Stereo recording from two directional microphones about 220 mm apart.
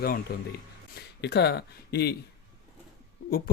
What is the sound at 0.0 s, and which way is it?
Speech, 45° left (ahead or behind).